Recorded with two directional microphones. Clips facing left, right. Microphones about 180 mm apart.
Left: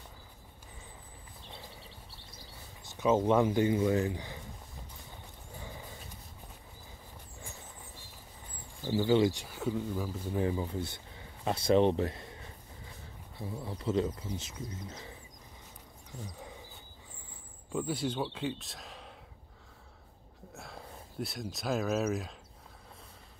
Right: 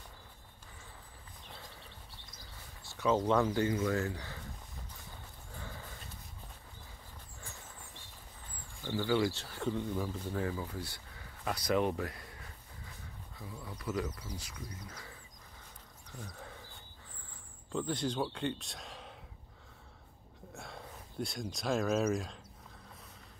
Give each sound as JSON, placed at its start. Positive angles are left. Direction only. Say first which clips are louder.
{"t": 1.6, "sound": "bird", "louder": "left 2 dB", "side_deg": 0}
{"t": 2.8, "sound": "speech", "louder": "left 3 dB", "side_deg": 20}
{"t": 5.5, "sound": "dog", "louder": "left 2 dB", "side_deg": 15}
{"t": 8.8, "sound": "speech", "louder": "left 5 dB", "side_deg": 20}
{"t": 10.3, "sound": "speech", "louder": "left 7 dB", "side_deg": 20}
{"t": 16.1, "sound": "a sound", "louder": "left 2 dB", "side_deg": 15}
{"t": 17.7, "sound": "speech", "louder": "left 1 dB", "side_deg": 10}
{"t": 20.5, "sound": "speech", "louder": "left 1 dB", "side_deg": 0}